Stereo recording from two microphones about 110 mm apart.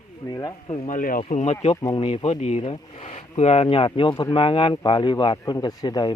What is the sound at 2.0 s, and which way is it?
Speech, 60° left (ahead or behind).